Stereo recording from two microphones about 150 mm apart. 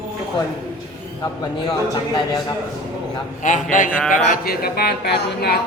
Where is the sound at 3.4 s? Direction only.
60° left (ahead or behind).